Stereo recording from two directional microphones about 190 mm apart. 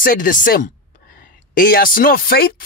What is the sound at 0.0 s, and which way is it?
Speech, 45° left (ahead or behind).